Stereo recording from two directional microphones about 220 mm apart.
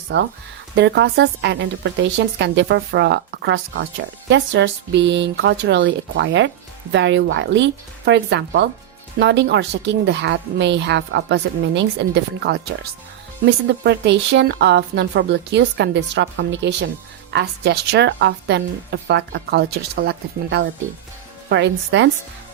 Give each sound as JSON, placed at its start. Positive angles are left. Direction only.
{"t": 0.1, "sound": "speech", "side_deg": -50}